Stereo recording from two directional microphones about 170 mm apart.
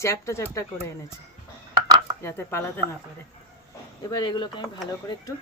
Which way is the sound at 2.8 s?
25° right (ahead or behind).